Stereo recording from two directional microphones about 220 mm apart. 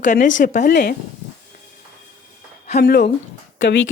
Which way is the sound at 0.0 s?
35° left (ahead or behind).